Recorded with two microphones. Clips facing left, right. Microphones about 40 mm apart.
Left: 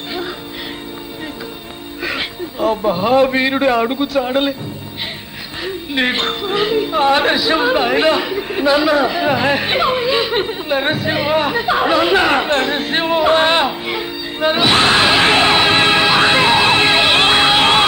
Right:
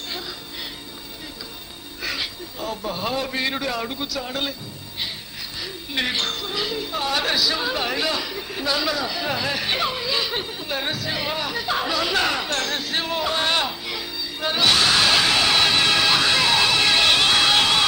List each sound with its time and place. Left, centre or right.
2.0 s a man's voice: left
5.6 s a woman's voice: left